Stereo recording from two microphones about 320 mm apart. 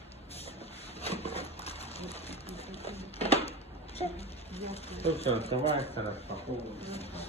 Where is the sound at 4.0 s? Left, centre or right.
Centre.